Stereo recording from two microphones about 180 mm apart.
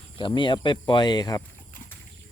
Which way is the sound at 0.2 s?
25° left (ahead or behind).